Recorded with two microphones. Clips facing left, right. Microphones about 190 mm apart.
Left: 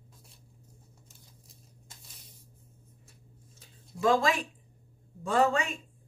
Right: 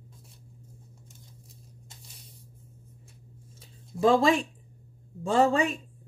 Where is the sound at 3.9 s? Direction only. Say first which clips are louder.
Right 4 dB; 30° right (ahead or behind).